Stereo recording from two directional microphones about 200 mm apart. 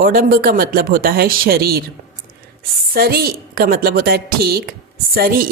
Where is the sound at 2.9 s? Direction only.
50° right (ahead or behind).